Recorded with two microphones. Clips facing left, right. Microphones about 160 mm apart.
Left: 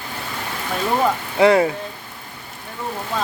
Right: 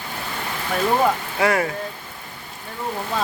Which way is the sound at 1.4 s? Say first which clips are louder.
Left 8 dB; 20° left (ahead or behind).